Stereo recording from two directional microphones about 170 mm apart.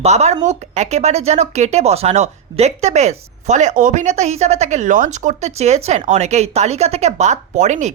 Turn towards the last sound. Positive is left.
turn(degrees=-45)  # may be behind; listen again after turning